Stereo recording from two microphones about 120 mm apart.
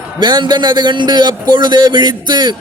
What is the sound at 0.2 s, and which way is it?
A man's voice, 35° right (ahead or behind).